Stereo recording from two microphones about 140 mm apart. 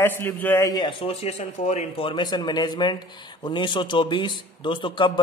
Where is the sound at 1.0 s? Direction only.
45° left (ahead or behind).